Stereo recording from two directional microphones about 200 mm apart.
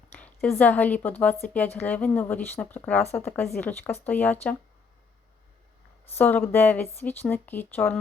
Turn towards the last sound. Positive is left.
turn(degrees=10)  # may be behind; listen again after turning